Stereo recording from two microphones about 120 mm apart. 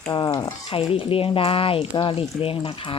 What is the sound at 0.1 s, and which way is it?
Speech, 35° left (ahead or behind).